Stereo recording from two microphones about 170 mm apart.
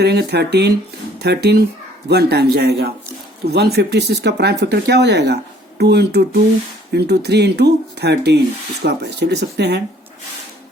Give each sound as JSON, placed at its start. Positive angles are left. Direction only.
{"t": 0.0, "sound": "speech", "side_deg": -75}